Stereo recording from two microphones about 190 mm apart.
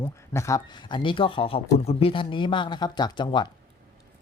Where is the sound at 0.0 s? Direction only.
15° left (ahead or behind).